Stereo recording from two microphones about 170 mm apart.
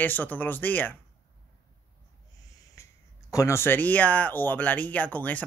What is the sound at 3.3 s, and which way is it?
Speech, 15° left (ahead or behind).